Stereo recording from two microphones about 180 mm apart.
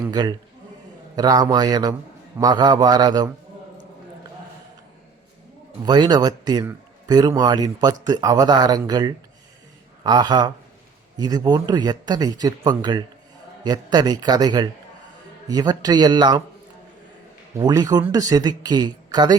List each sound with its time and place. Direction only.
0.0 s a man's voice: 25° right (ahead or behind)
5.8 s a man's voice: 25° right (ahead or behind)
17.6 s a man's voice: 20° right (ahead or behind)